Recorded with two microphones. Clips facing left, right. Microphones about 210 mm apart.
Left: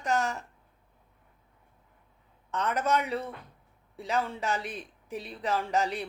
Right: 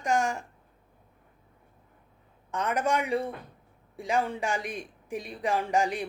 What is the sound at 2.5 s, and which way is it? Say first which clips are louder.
Speech: right 1 dB; 10° right (ahead or behind).